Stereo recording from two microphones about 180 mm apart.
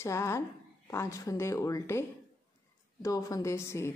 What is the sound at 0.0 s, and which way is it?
A woman's voice, 15° left (ahead or behind).